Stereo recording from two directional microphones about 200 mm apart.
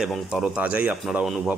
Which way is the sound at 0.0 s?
Centre (ahead or behind).